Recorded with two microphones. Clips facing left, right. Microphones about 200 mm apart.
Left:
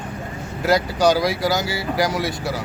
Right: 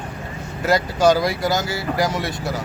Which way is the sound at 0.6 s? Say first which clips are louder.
Even; centre (ahead or behind).